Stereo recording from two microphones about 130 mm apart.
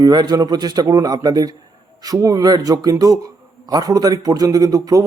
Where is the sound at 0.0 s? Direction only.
30° right (ahead or behind).